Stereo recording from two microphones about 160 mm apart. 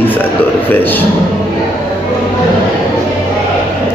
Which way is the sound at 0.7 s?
10° left (ahead or behind).